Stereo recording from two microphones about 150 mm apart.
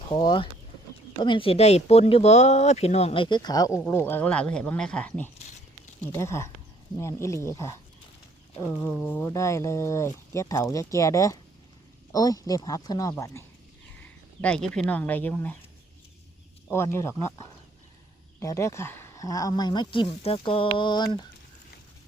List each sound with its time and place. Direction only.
0.1 s speech: 30° left (ahead or behind)
3.8 s speech: 15° left (ahead or behind)
14.0 s speech: 5° left (ahead or behind)
16.7 s speech: 15° left (ahead or behind)
18.3 s speech: 20° left (ahead or behind)